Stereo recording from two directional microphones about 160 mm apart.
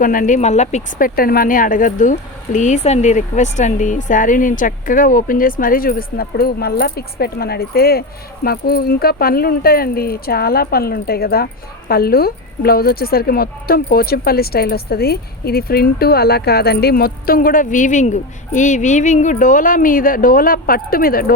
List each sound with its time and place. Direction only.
0.0 s speech: 55° left (ahead or behind)